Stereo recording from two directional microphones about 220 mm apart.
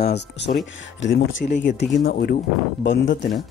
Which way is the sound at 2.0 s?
40° left (ahead or behind).